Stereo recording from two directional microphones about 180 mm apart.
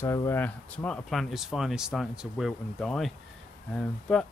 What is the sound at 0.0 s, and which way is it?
Speech, 15° left (ahead or behind).